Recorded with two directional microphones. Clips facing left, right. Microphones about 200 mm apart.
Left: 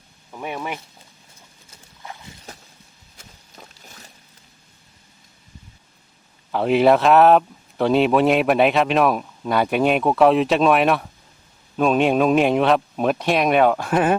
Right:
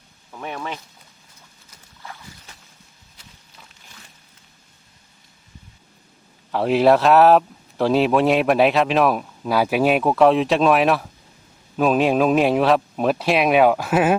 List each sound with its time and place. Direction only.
0.3 s speech: 10° left (ahead or behind)
2.0 s clip-clop: 20° left (ahead or behind)
3.2 s a sound: 45° left (ahead or behind)
6.5 s speech: centre (ahead or behind)